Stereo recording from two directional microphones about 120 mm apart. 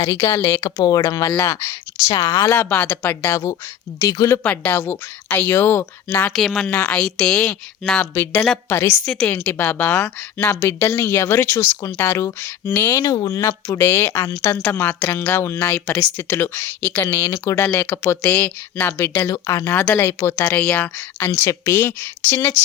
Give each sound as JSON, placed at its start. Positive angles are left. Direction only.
{"t": 0.0, "sound": "a woman's voice", "side_deg": 25}
{"t": 2.5, "sound": "a woman's voice", "side_deg": 15}
{"t": 3.3, "sound": "a woman's voice", "side_deg": 25}
{"t": 4.4, "sound": "a woman's voice", "side_deg": 10}
{"t": 6.3, "sound": "a woman's voice", "side_deg": 0}
{"t": 6.7, "sound": "a woman's voice", "side_deg": 15}
{"t": 7.0, "sound": "a woman's voice", "side_deg": 5}
{"t": 8.1, "sound": "a woman's voice", "side_deg": 20}
{"t": 17.7, "sound": "a woman's voice", "side_deg": 10}
{"t": 17.9, "sound": "a woman's voice", "side_deg": 20}